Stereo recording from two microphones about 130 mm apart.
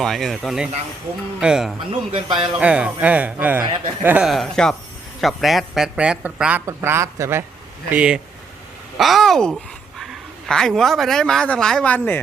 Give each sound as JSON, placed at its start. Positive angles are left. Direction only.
{"t": 0.0, "sound": "speech", "side_deg": 0}
{"t": 1.9, "sound": "speech", "side_deg": -40}
{"t": 2.5, "sound": "speech", "side_deg": -10}
{"t": 4.3, "sound": "speech", "side_deg": 5}
{"t": 6.7, "sound": "speech", "side_deg": -20}
{"t": 7.9, "sound": "a woman's voice", "side_deg": -10}